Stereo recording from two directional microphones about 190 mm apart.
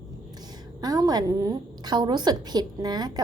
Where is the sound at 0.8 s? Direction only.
20° right (ahead or behind).